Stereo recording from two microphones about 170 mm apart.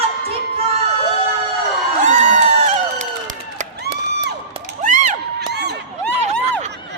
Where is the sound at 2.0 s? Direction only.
45° right (ahead or behind).